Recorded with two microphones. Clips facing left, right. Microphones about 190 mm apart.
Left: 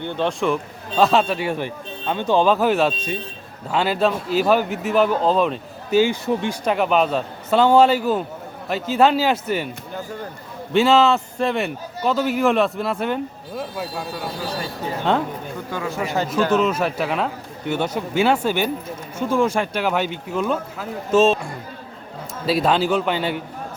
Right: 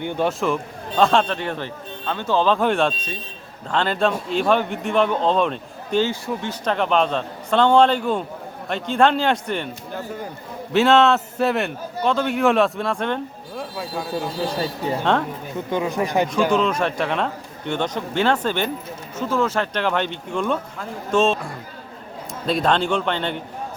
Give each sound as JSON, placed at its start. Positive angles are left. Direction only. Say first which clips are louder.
{"t": 0.0, "sound": "a man's voice", "louder": "even", "side_deg": -10}
{"t": 6.1, "sound": "a man's voice", "louder": "left 4 dB", "side_deg": 15}
{"t": 15.7, "sound": "speech", "louder": "right 3 dB", "side_deg": -20}
{"t": 16.5, "sound": "a man's voice", "louder": "left 1 dB", "side_deg": 5}